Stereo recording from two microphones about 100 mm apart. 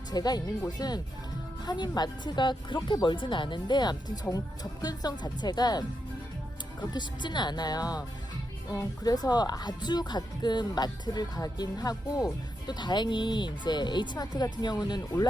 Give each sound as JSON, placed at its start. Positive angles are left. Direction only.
{"t": 0.1, "sound": "speech", "side_deg": 40}
{"t": 6.9, "sound": "speech", "side_deg": 50}